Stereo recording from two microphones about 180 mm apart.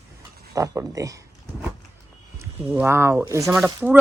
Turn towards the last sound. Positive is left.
turn(degrees=-10)  # may be behind; listen again after turning